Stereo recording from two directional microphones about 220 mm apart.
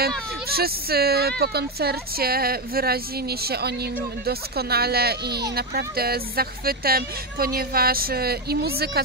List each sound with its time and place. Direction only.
0.5 s speech: 45° right (ahead or behind)